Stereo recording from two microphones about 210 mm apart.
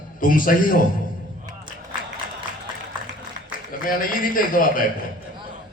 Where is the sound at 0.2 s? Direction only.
40° left (ahead or behind).